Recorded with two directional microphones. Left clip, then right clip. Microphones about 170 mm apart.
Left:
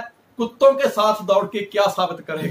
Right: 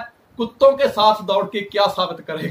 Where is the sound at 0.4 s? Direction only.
5° left (ahead or behind).